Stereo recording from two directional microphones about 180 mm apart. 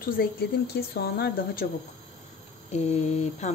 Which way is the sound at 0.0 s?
60° left (ahead or behind).